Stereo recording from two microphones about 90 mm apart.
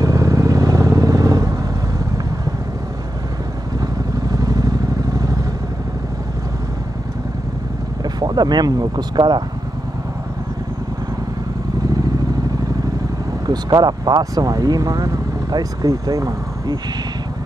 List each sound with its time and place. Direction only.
0.0 s vehicle: 40° right (ahead or behind)
3.8 s vehicle: 45° right (ahead or behind)
8.0 s speech: 50° right (ahead or behind)
13.5 s speech: 50° right (ahead or behind)